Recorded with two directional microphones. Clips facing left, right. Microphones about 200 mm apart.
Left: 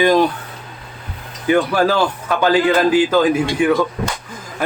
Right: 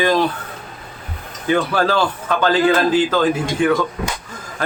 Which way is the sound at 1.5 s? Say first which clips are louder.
Left 2 dB; 10° left (ahead or behind).